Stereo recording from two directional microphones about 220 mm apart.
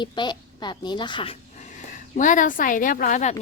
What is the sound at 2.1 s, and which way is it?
Speech, 35° left (ahead or behind).